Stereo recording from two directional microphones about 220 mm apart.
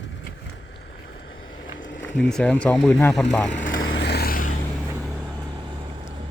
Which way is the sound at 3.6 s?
35° left (ahead or behind).